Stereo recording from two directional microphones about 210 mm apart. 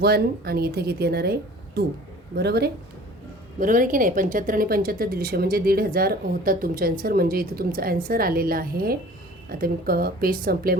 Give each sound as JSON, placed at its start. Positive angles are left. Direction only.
{"t": 0.0, "sound": "a woman's voice", "side_deg": -50}
{"t": 3.6, "sound": "a woman's voice", "side_deg": -40}